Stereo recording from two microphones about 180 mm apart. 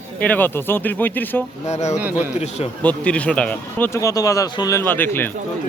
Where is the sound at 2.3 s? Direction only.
35° left (ahead or behind).